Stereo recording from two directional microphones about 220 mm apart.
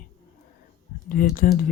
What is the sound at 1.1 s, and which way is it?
Speech, 40° left (ahead or behind).